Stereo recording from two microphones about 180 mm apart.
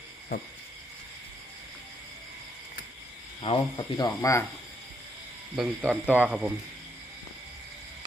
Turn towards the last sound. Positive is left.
turn(degrees=-5)  # may be behind; listen again after turning